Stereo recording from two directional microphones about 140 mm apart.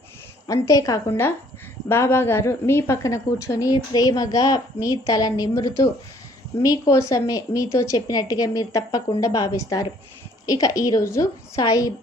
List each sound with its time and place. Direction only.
0.4 s a woman's voice: 25° left (ahead or behind)